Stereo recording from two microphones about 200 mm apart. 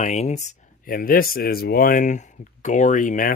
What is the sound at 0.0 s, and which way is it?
Speech, 35° left (ahead or behind).